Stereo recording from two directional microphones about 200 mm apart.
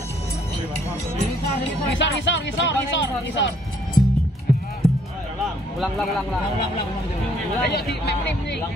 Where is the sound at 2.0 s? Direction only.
65° left (ahead or behind).